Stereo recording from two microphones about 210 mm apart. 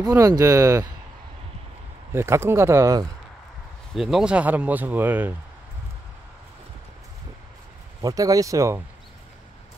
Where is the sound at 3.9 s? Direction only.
Centre (ahead or behind).